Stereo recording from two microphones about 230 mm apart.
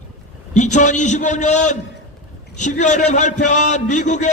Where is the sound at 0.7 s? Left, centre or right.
Left.